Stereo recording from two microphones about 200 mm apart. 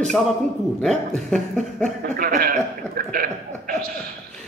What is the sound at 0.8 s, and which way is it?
Speech, 5° left (ahead or behind).